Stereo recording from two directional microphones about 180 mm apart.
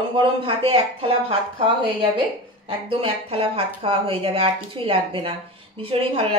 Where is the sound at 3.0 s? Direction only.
30° right (ahead or behind).